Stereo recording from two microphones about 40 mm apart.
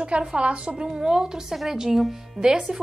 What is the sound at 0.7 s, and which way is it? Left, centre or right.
A woman's voice, centre.